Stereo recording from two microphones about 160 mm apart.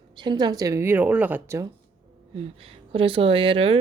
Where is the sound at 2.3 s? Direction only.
35° right (ahead or behind).